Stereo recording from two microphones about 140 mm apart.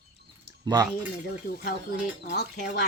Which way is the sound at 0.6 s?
30° right (ahead or behind).